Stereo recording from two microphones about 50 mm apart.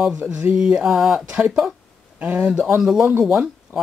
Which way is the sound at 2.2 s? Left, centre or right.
Right.